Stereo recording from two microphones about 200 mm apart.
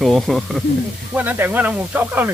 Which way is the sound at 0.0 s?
Centre (ahead or behind).